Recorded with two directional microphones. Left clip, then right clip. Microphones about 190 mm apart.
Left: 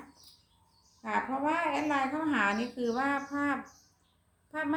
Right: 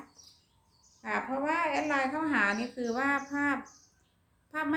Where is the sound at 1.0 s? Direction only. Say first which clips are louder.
Left 1 dB; 15° right (ahead or behind).